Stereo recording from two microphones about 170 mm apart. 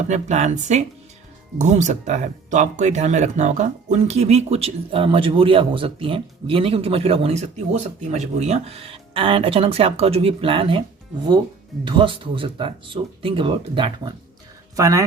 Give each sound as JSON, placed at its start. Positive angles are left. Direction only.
{"t": 0.1, "sound": "speech", "side_deg": -45}
{"t": 11.9, "sound": "speech", "side_deg": -30}
{"t": 14.8, "sound": "speech", "side_deg": -20}